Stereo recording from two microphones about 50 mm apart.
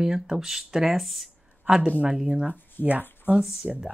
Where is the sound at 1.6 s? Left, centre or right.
Centre.